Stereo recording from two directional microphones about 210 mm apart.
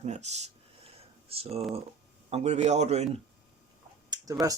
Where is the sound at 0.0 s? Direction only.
30° right (ahead or behind).